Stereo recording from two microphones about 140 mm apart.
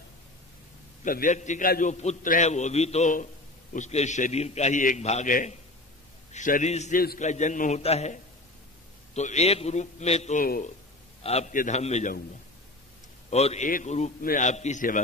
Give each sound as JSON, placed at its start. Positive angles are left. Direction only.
{"t": 1.0, "sound": "a man's voice", "side_deg": 70}
{"t": 7.0, "sound": "a man's voice", "side_deg": 75}
{"t": 7.8, "sound": "a man's voice", "side_deg": 50}
{"t": 10.4, "sound": "speech", "side_deg": 90}
{"t": 11.2, "sound": "a man's voice", "side_deg": 50}
{"t": 13.3, "sound": "a man's voice", "side_deg": 50}
{"t": 14.2, "sound": "a man's voice", "side_deg": 70}